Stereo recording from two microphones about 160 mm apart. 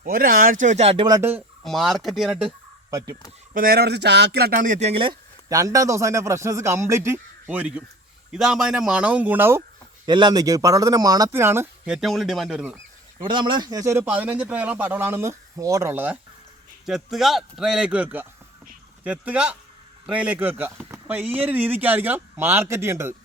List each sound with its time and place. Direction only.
0.0 s speech: 65° right (ahead or behind); by 1.0 s 40° right (ahead or behind)
1.0 s speech: 25° right (ahead or behind)
1.6 s a man's voice: centre (ahead or behind)
3.5 s speech: 65° right (ahead or behind); by 5.1 s 35° right (ahead or behind)
5.5 s speech: 20° right (ahead or behind)
10.1 s speech: 30° right (ahead or behind)
11.9 s a man's voice: centre (ahead or behind)
13.2 s speech: 30° right (ahead or behind); by 16.1 s 15° right (ahead or behind)
16.8 s a man's voice: centre (ahead or behind)